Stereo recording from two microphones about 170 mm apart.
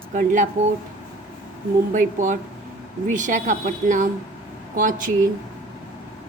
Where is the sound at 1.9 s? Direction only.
50° right (ahead or behind).